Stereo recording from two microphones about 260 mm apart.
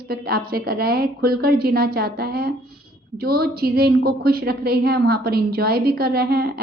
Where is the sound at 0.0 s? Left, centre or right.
Right.